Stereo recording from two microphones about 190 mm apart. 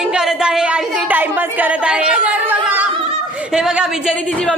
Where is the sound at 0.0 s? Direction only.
5° right (ahead or behind).